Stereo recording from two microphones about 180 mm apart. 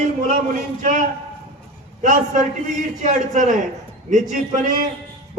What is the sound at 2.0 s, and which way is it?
A man's voice, 45° right (ahead or behind).